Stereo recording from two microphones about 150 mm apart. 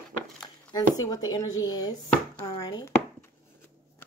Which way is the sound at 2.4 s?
25° left (ahead or behind).